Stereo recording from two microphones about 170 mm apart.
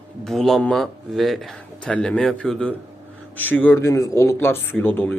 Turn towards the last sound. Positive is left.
turn(degrees=10)  # may be behind; listen again after turning